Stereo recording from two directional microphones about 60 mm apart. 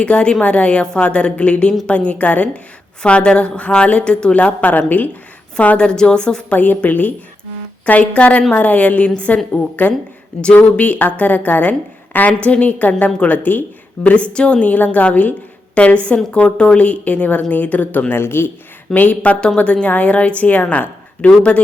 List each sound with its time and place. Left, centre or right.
0.0 s a woman's voice: centre
5.5 s a woman's voice: centre
6.6 s a woman's voice: left
9.8 s speech: left
10.4 s a woman's voice: left
18.1 s speech: left
18.9 s a woman's voice: left